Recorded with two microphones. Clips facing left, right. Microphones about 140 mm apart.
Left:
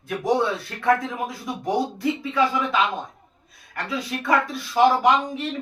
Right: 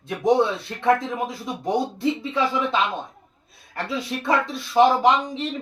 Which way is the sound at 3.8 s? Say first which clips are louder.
Right 1 dB; 25° right (ahead or behind).